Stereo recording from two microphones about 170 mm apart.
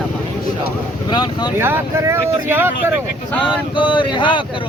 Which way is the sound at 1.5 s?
15° right (ahead or behind).